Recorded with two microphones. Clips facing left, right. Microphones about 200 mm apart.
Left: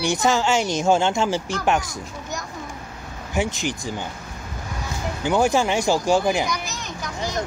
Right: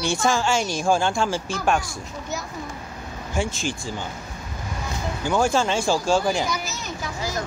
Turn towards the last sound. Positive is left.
turn(degrees=-5)  # may be behind; listen again after turning